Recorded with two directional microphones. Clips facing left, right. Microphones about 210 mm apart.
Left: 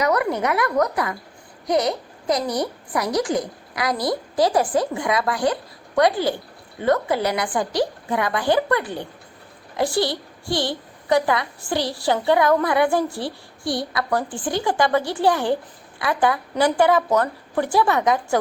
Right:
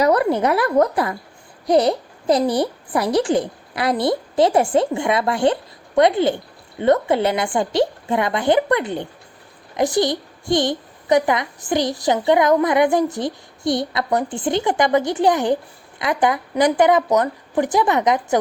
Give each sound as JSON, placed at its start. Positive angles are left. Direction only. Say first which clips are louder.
{"t": 0.0, "sound": "a child's voice", "louder": "right 4 dB", "side_deg": -30}